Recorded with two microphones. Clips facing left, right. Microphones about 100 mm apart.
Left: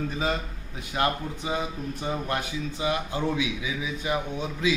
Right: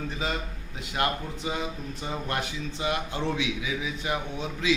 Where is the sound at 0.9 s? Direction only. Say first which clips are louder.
Left 2 dB; 25° left (ahead or behind).